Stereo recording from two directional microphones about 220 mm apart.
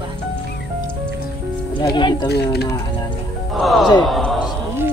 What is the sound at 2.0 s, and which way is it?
Speech, 20° left (ahead or behind).